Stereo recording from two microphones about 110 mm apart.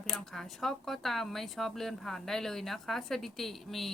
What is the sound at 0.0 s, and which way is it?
Speech, 5° left (ahead or behind).